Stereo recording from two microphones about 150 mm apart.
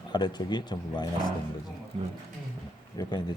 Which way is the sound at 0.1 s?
30° left (ahead or behind).